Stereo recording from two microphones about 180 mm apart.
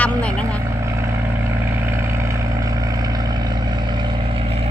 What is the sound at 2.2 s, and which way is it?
Vehicle, 20° right (ahead or behind).